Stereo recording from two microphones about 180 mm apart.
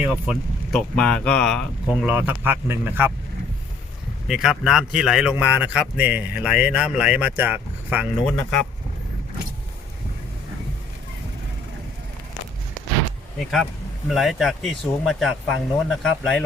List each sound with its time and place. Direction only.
0.0 s speech: 5° right (ahead or behind)
1.9 s speech: 10° right (ahead or behind)
4.3 s speech: centre (ahead or behind)
8.2 s speech: 5° left (ahead or behind)
14.1 s speech: centre (ahead or behind)